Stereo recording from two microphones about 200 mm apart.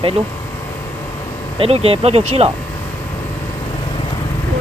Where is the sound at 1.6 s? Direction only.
30° right (ahead or behind).